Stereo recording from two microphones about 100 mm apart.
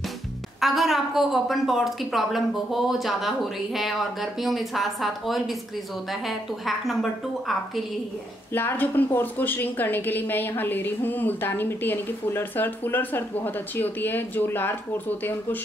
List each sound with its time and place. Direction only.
0.6 s a woman's voice: centre (ahead or behind)
8.5 s a woman's voice: 20° left (ahead or behind)